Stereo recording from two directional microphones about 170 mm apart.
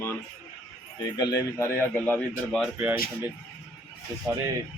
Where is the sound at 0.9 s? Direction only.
25° left (ahead or behind); by 2.6 s 10° left (ahead or behind).